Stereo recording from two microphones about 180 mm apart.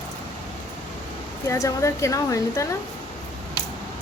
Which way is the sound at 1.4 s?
15° left (ahead or behind).